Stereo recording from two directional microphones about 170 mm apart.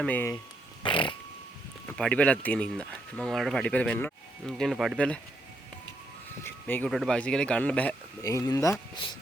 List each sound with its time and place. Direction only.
0.0 s speech: 10° left (ahead or behind)
0.8 s a sound: 30° left (ahead or behind)
1.9 s speech: 5° left (ahead or behind)
6.4 s speech: 10° left (ahead or behind)
8.2 s speech: 20° left (ahead or behind)